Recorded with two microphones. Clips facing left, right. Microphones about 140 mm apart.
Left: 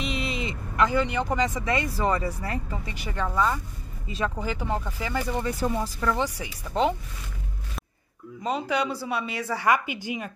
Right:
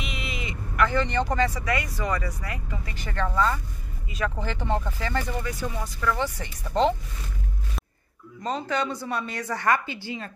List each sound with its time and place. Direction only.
0.0 s vehicle: 30° left (ahead or behind)
0.8 s speech: 10° left (ahead or behind); by 2.9 s 30° left (ahead or behind)
2.9 s speech: 10° left (ahead or behind)
5.4 s speech: 30° left (ahead or behind)
6.1 s speech: 10° left (ahead or behind)
8.4 s speech: 10° left (ahead or behind)